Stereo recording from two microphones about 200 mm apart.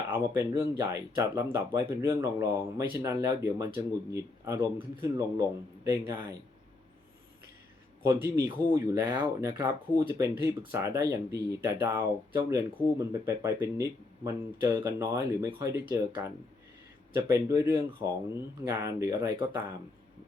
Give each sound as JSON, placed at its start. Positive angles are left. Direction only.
{"t": 0.1, "sound": "speech", "side_deg": -15}
{"t": 8.0, "sound": "speech", "side_deg": -15}